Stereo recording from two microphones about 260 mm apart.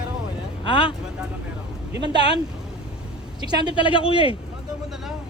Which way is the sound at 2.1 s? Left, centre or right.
Centre.